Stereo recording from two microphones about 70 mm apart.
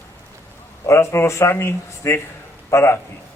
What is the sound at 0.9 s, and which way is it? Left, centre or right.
A man's voice, left.